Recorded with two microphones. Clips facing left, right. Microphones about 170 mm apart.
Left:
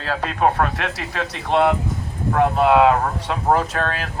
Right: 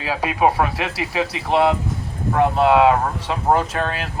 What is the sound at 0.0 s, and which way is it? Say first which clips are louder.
Speech: right 1 dB; 10° right (ahead or behind).